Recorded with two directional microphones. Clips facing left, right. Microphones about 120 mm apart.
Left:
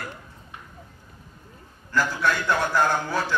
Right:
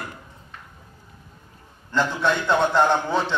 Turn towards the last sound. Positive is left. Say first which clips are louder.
# right 3 dB
turn(degrees=-25)  # may be behind; listen again after turning